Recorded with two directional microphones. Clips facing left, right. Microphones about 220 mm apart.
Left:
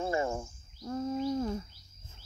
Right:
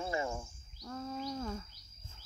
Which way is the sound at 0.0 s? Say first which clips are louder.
Left 5 dB; 50° left (ahead or behind).